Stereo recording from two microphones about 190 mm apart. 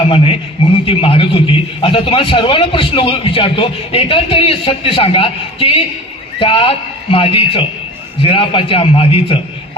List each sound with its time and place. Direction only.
0.9 s a man's voice: 30° left (ahead or behind)